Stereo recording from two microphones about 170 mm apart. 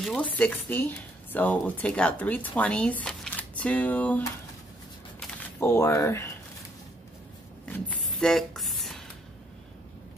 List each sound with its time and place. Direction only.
0.0 s a woman's voice: 5° left (ahead or behind)
5.6 s a woman's voice: 15° left (ahead or behind)
7.6 s a sound: 10° left (ahead or behind)